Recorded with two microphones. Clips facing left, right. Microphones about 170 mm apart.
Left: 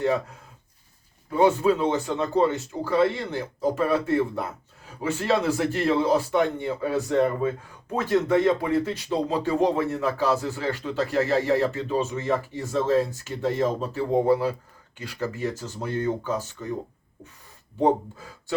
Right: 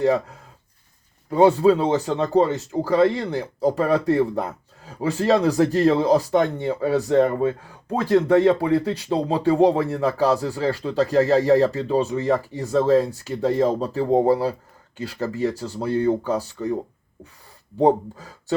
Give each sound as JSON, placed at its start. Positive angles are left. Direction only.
{"t": 1.3, "sound": "speech", "side_deg": -35}
{"t": 17.7, "sound": "speech", "side_deg": -35}